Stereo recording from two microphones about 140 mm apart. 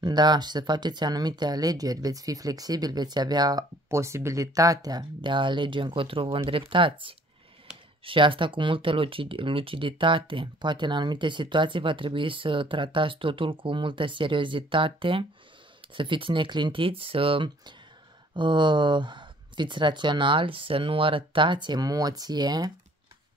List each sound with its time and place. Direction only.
0.0 s speech: 30° right (ahead or behind)